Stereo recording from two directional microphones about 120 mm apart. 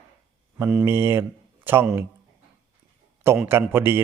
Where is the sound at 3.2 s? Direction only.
20° right (ahead or behind).